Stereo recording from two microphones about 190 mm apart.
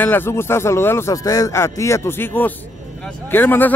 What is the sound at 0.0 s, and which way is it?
Speech, 10° left (ahead or behind).